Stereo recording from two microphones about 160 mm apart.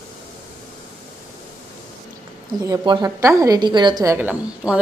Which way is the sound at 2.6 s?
25° right (ahead or behind).